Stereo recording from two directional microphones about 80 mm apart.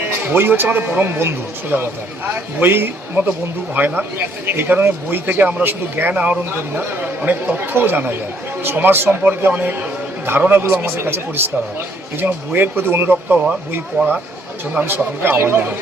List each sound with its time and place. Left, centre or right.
0.1 s speech: right
6.4 s speech: right